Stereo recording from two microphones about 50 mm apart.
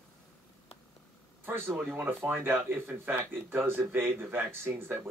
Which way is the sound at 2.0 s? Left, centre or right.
Right.